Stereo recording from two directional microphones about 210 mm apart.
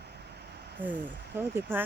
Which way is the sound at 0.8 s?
10° right (ahead or behind).